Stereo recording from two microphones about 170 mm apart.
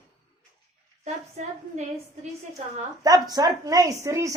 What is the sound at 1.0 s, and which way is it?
Speech, 40° right (ahead or behind).